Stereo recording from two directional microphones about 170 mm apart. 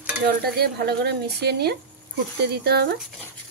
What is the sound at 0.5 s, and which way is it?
Speech, 70° right (ahead or behind).